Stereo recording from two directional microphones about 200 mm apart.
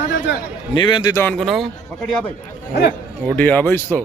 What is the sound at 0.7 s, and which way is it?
Speech, 25° left (ahead or behind).